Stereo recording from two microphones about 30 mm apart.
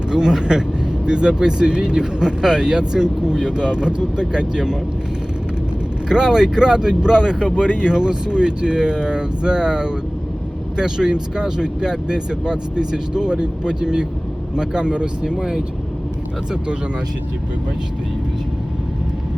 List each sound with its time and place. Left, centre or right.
0.1 s speech: right
6.1 s speech: right